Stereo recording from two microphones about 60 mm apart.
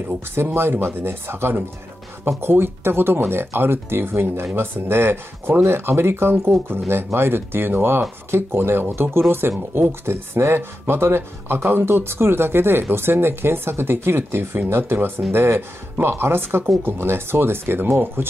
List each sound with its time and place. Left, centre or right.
0.6 s speech: right